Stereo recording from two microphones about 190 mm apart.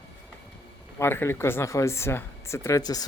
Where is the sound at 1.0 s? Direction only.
10° left (ahead or behind).